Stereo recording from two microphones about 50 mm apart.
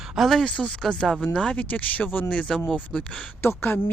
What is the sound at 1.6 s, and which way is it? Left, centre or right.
Speech, left.